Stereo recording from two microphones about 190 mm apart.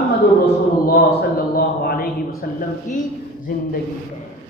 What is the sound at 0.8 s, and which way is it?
Mantra, 55° left (ahead or behind).